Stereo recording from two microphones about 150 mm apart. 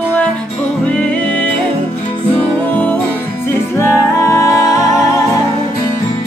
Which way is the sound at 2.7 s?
10° left (ahead or behind).